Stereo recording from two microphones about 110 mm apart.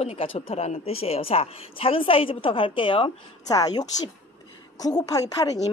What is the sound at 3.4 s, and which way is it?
A woman's voice, 35° left (ahead or behind).